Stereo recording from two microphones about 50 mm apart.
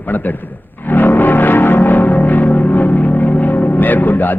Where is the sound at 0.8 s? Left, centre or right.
Left.